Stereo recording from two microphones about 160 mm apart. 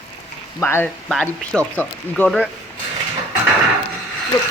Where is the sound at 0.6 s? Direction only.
15° left (ahead or behind).